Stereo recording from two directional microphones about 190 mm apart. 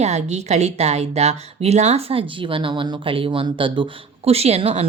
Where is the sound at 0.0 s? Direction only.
35° right (ahead or behind).